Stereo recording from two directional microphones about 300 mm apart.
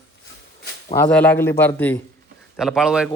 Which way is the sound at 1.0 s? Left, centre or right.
Centre.